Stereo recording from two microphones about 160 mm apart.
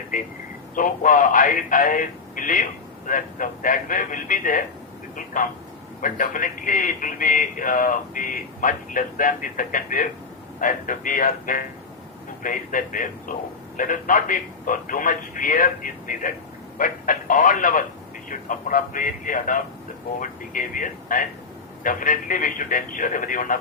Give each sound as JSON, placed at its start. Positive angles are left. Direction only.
{"t": 0.1, "sound": "a man's voice", "side_deg": 55}